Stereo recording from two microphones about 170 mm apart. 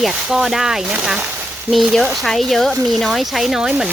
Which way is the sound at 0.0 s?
5° right (ahead or behind).